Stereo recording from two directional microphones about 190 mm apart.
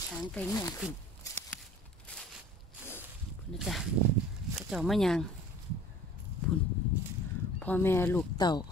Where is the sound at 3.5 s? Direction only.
Centre (ahead or behind).